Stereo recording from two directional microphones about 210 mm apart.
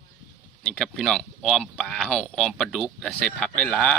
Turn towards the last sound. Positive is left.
turn(degrees=5)  # may be behind; listen again after turning